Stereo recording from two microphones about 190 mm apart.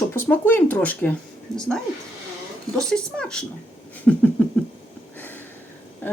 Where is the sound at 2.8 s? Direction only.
5° left (ahead or behind).